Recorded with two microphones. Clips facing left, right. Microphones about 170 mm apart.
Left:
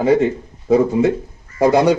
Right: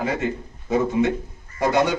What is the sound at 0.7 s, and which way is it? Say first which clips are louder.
A man's voice: left 6 dB; 35° left (ahead or behind).